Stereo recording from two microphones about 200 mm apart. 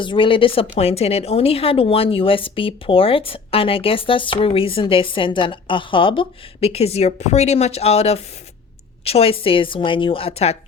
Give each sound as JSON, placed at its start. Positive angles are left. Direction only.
{"t": 0.0, "sound": "a woman's voice", "side_deg": 25}